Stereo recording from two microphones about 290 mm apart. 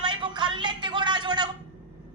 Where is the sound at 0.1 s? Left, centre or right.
Centre.